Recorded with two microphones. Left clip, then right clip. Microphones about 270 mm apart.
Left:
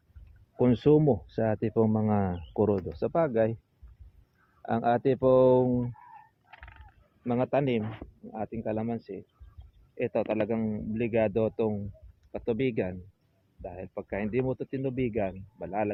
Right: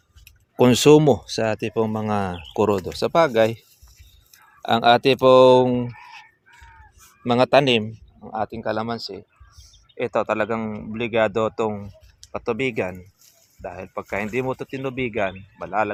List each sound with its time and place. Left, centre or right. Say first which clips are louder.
0.6 s speech: right 9 dB; right
1.4 s speech: right 5 dB; centre
4.6 s speech: right 10 dB; right
7.3 s speech: right 11 dB; right
8.3 s speech: right 8 dB; right
9.0 s speech: right 7 dB; right
10.0 s speech: right 7 dB; centre
15.6 s speech: right 8 dB; right